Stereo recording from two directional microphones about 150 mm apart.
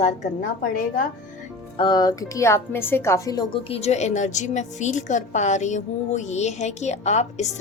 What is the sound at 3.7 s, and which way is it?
A woman's voice, 45° left (ahead or behind).